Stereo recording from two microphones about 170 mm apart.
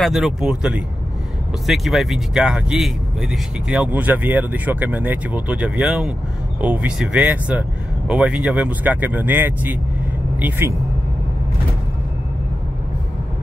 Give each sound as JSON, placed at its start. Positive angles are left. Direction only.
{"t": 0.0, "sound": "speech", "side_deg": 0}